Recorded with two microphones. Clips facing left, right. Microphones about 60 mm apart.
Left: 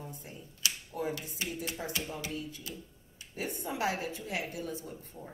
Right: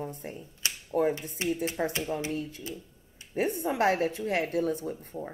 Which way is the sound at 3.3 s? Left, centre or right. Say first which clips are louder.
Right 9 dB; right.